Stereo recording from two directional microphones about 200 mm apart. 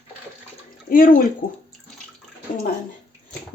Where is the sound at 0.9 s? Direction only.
45° left (ahead or behind).